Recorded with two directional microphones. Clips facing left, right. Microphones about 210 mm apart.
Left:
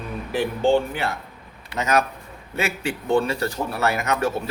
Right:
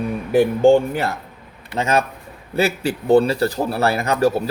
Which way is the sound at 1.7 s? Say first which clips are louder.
Right 2 dB; 25° right (ahead or behind).